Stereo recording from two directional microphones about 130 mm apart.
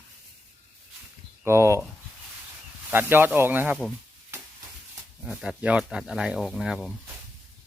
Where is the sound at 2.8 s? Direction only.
15° right (ahead or behind).